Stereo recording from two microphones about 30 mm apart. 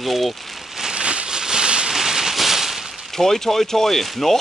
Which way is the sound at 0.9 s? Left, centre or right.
Right.